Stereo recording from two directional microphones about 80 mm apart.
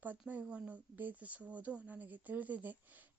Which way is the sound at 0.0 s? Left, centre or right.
Right.